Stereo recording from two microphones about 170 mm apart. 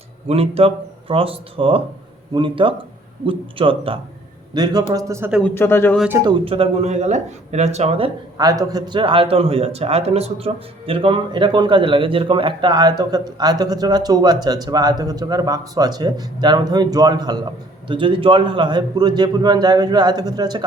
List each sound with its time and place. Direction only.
0.3 s a man's voice: 35° right (ahead or behind); by 5.3 s 15° right (ahead or behind)
5.4 s speech: 15° left (ahead or behind)
6.1 s speech: 15° right (ahead or behind)
6.4 s speech: 35° right (ahead or behind)
8.4 s a man's voice: 20° right (ahead or behind)